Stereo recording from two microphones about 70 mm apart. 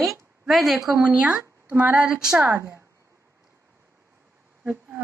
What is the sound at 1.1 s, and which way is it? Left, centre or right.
Speech, centre.